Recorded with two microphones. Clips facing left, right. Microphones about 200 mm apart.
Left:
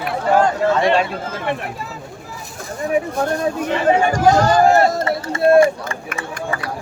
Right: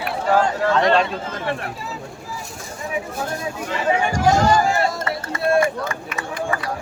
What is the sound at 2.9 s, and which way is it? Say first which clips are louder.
Speech: left 8 dB; 55° left (ahead or behind).